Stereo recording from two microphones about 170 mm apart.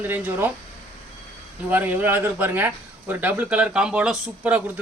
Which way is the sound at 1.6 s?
10° right (ahead or behind).